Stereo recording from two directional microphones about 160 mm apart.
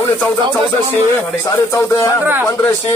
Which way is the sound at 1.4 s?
15° left (ahead or behind).